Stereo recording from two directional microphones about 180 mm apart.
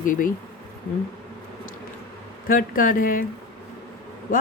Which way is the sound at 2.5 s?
50° left (ahead or behind).